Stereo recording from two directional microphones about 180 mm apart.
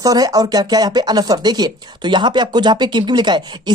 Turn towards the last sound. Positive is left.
turn(degrees=-25)  # may be behind; listen again after turning